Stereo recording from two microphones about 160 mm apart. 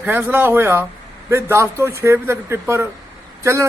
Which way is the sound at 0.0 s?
10° right (ahead or behind).